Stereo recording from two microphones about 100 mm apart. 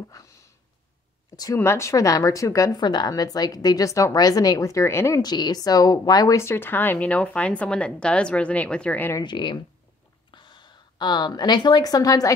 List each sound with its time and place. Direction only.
0.2 s a sound: 35° left (ahead or behind)
1.3 s a woman's voice: 40° left (ahead or behind)
1.6 s speech: 30° left (ahead or behind)
5.2 s speech: 45° left (ahead or behind); by 9.1 s 15° left (ahead or behind)
9.2 s a woman's voice: 50° left (ahead or behind)